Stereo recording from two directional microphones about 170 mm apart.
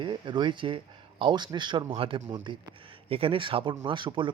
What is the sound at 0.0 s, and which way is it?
A man's voice, 25° right (ahead or behind).